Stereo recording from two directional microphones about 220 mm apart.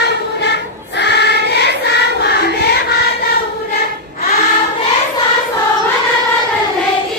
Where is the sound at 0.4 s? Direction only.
50° left (ahead or behind).